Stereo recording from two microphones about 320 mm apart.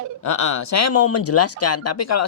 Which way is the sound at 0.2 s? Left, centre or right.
Left.